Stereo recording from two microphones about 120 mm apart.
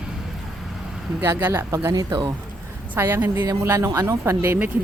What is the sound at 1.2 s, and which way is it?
Speech, 20° right (ahead or behind).